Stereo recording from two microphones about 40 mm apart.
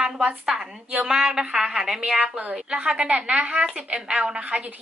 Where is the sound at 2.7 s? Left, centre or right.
Right.